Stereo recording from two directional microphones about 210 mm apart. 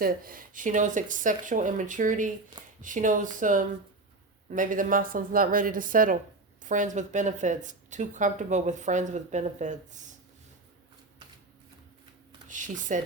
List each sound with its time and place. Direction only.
0.0 s speech: 45° right (ahead or behind)
12.5 s speech: 35° right (ahead or behind)